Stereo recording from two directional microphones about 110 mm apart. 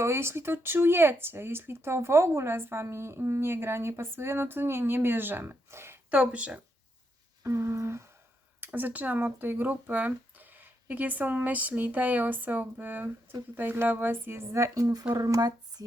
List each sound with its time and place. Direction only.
0.0 s speech: 25° right (ahead or behind)
7.4 s speech: 25° right (ahead or behind)